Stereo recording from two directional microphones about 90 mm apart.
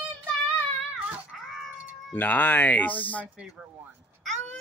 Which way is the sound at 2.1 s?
20° left (ahead or behind).